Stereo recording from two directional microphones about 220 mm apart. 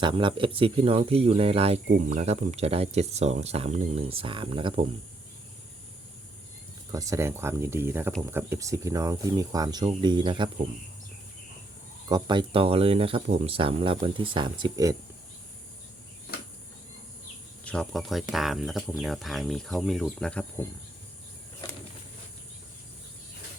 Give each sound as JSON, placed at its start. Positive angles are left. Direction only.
{"t": 0.0, "sound": "speech", "side_deg": -20}
{"t": 6.9, "sound": "speech", "side_deg": -15}
{"t": 12.0, "sound": "speech", "side_deg": -20}
{"t": 17.6, "sound": "speech", "side_deg": 5}